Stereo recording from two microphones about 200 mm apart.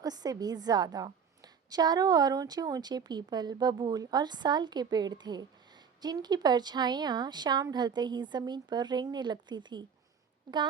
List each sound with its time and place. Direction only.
0.0 s a woman's voice: 20° right (ahead or behind)